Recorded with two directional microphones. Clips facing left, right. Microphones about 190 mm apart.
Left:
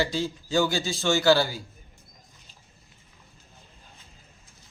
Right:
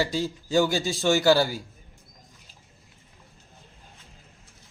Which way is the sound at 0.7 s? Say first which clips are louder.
Right 2 dB; 40° right (ahead or behind).